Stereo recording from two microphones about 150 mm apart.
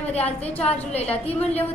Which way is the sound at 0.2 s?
10° left (ahead or behind).